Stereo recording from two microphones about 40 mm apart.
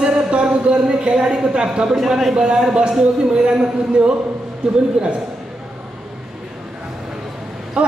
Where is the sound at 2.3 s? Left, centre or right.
Right.